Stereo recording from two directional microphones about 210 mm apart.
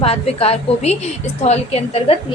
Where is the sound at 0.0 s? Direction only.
30° left (ahead or behind).